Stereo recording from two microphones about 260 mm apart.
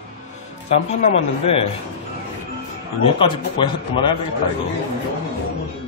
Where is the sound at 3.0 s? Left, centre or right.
Centre.